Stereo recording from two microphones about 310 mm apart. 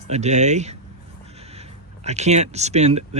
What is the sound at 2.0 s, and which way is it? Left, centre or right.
Speech, right.